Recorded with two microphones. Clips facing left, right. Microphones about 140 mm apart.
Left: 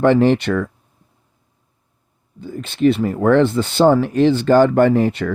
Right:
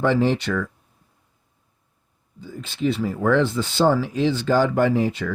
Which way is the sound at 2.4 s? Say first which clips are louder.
Left 8 dB; 60° left (ahead or behind).